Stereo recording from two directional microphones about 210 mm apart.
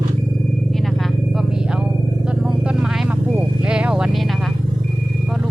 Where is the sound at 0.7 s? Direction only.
Centre (ahead or behind).